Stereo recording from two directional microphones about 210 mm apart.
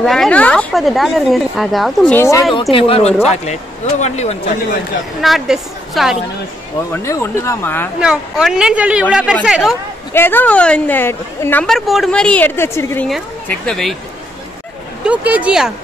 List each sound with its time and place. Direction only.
0.0 s speech: centre (ahead or behind)
2.1 s a woman's voice: 15° left (ahead or behind)
2.7 s speech: 30° left (ahead or behind)
5.2 s speech: centre (ahead or behind)
6.9 s a woman's voice: 10° left (ahead or behind)
8.0 s speech: 5° right (ahead or behind)
10.1 s a woman's voice: 10° left (ahead or behind)
15.0 s speech: 5° right (ahead or behind)